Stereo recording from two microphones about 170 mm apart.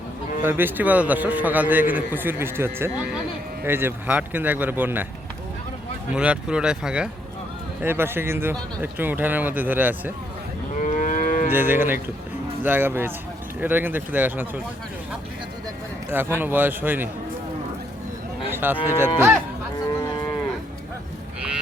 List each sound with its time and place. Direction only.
0.4 s a man's voice: 10° right (ahead or behind)
6.1 s a man's voice: 5° right (ahead or behind)
10.8 s moo: 45° left (ahead or behind)
11.5 s a man's voice: 10° right (ahead or behind)
16.4 s a man's voice: 10° right (ahead or behind)
18.5 s cattle: 10° right (ahead or behind)
18.9 s a man's voice: 15° right (ahead or behind)